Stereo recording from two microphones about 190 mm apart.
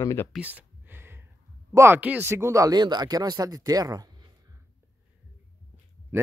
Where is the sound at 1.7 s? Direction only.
15° right (ahead or behind).